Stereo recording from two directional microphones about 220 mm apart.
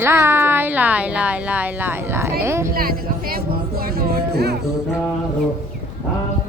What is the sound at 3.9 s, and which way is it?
Music, 45° right (ahead or behind).